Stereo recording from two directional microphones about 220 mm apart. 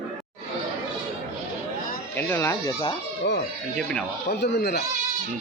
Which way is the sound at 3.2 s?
50° left (ahead or behind).